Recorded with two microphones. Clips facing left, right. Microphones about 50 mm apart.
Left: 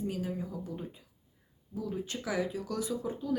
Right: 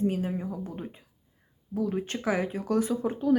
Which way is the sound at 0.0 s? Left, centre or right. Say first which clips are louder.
Right 7 dB; right.